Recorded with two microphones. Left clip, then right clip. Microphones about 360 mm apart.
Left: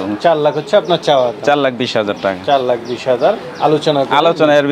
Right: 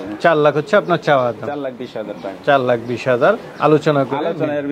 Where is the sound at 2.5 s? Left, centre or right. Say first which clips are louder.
Right 1 dB; right.